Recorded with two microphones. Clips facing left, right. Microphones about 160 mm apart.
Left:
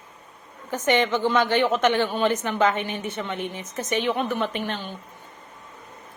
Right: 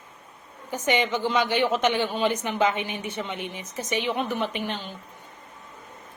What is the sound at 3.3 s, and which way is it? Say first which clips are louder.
Speech: left 3 dB; 50° left (ahead or behind).